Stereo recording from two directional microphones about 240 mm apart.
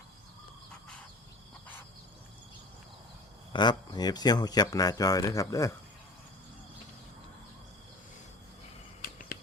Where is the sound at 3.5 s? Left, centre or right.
Centre.